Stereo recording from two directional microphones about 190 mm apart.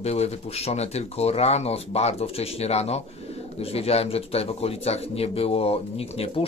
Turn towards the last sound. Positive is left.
turn(degrees=30)  # may be behind; listen again after turning